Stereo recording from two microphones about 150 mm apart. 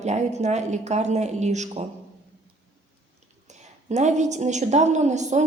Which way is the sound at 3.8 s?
50° right (ahead or behind).